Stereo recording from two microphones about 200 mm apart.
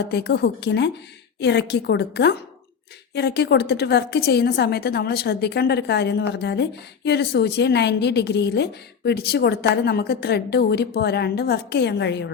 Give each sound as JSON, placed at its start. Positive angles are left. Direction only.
{"t": 0.0, "sound": "a woman's voice", "side_deg": 55}